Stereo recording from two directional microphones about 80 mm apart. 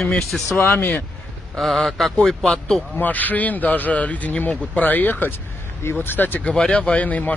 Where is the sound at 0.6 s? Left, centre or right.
Left.